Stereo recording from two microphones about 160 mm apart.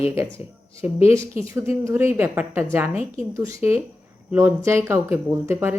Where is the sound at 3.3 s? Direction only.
20° right (ahead or behind).